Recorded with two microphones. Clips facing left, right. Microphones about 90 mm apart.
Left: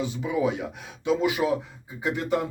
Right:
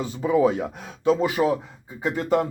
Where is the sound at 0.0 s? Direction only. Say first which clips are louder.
Right 5 dB; 45° right (ahead or behind).